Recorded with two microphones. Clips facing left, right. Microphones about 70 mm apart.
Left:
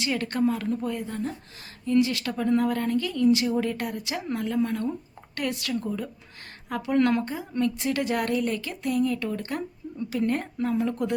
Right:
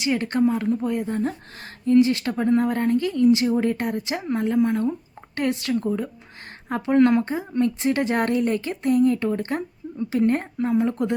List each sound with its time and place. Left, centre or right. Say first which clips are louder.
0.0 s speech: right 4 dB; right
0.9 s speech: right 6 dB; right